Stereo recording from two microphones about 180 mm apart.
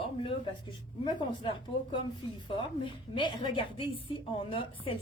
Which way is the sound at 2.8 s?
25° left (ahead or behind).